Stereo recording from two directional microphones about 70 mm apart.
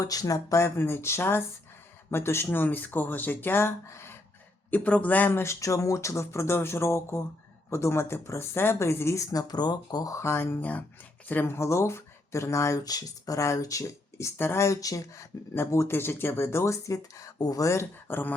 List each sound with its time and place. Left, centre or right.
0.0 s speech: left
4.7 s a man's voice: left
5.4 s speech: left
10.2 s speech: left
14.8 s speech: left
16.0 s speech: left
17.3 s speech: left
18.1 s a man's voice: left